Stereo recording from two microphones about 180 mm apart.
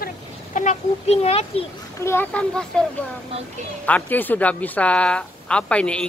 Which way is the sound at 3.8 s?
10° left (ahead or behind).